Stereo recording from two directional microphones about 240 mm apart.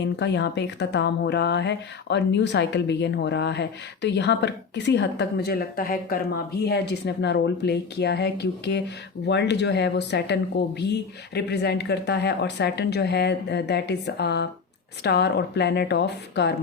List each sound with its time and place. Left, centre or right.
0.0 s speech: left